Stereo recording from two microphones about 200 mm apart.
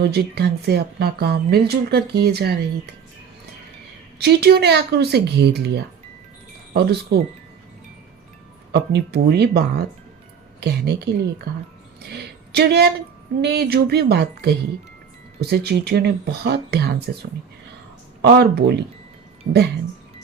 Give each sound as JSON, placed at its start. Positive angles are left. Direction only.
{"t": 0.0, "sound": "speech", "side_deg": -55}
{"t": 4.2, "sound": "speech", "side_deg": -55}
{"t": 8.7, "sound": "speech", "side_deg": -55}
{"t": 12.0, "sound": "a sound", "side_deg": -55}
{"t": 13.4, "sound": "speech", "side_deg": -55}
{"t": 18.3, "sound": "speech", "side_deg": -55}
{"t": 19.5, "sound": "speech", "side_deg": -40}